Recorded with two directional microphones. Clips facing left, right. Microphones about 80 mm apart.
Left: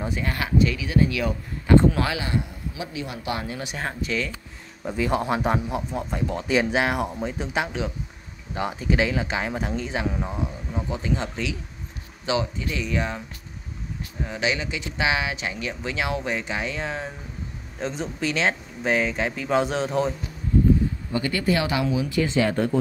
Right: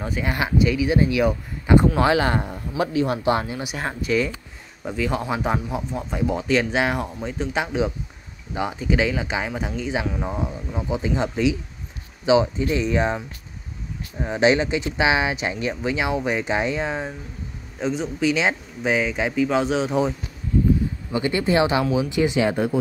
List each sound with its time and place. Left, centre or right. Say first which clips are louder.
0.2 s speech: right 2 dB; centre
2.1 s a man's voice: right 7 dB; right
3.4 s speech: right 2 dB; centre
3.7 s speech: right 6 dB; centre
4.9 s speech: left 1 dB; centre
6.1 s speech: right 5 dB; centre
6.4 s speech: left 1 dB; centre; by 13.2 s right
14.2 s speech: right 8 dB; right
17.7 s speech: right 4 dB; centre
21.1 s speech: right 4 dB; right